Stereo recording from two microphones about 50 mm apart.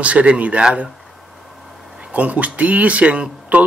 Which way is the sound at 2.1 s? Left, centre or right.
Right.